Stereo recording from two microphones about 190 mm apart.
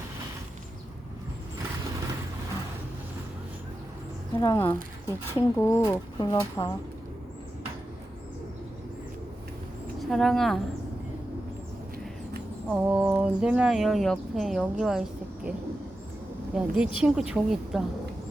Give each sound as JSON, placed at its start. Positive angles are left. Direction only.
{"t": 4.4, "sound": "speech", "side_deg": 15}
{"t": 10.0, "sound": "speech", "side_deg": 0}
{"t": 12.6, "sound": "speech", "side_deg": -5}
{"t": 16.6, "sound": "speech", "side_deg": -5}